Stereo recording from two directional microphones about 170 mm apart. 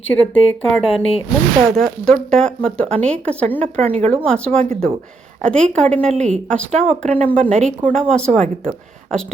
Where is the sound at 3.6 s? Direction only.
40° right (ahead or behind).